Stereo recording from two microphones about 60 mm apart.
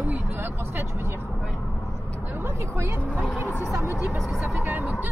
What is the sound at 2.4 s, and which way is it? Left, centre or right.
Speech, right.